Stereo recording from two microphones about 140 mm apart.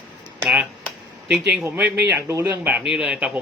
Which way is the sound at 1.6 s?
15° right (ahead or behind).